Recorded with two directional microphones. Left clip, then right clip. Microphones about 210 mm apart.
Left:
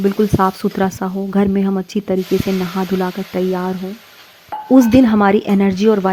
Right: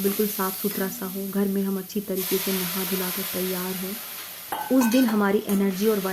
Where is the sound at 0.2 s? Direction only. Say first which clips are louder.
Left 11 dB; 40° left (ahead or behind).